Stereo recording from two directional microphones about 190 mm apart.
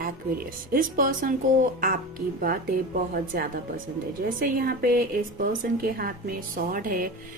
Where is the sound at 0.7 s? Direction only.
45° right (ahead or behind).